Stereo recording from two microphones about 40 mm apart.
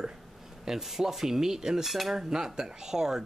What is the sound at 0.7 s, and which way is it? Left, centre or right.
Speech, centre.